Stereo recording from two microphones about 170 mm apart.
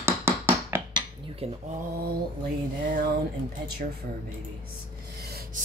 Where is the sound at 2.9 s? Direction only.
70° right (ahead or behind).